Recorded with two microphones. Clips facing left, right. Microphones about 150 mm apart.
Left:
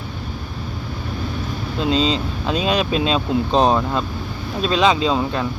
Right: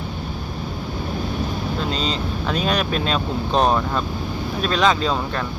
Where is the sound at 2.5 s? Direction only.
20° left (ahead or behind).